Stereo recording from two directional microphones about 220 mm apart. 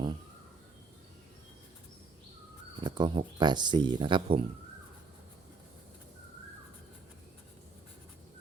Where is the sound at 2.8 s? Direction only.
20° right (ahead or behind).